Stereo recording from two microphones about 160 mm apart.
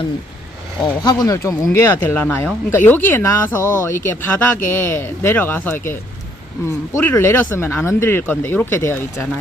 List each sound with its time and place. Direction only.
0.8 s speech: 25° left (ahead or behind)
7.0 s speech: 15° left (ahead or behind)